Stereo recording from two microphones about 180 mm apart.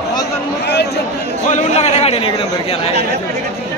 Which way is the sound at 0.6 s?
70° left (ahead or behind).